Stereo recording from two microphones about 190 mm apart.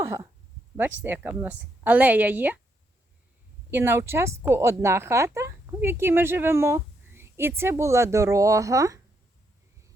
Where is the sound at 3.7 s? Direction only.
10° right (ahead or behind).